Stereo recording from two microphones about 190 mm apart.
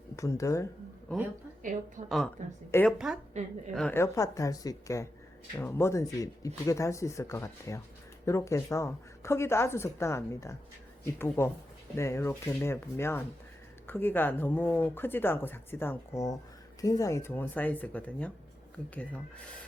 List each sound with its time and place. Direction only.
0.2 s speech: 15° left (ahead or behind)
2.0 s a woman's voice: centre (ahead or behind)
2.7 s speech: 15° left (ahead or behind)
3.3 s a woman's voice: 35° right (ahead or behind)
3.7 s speech: 5° left (ahead or behind)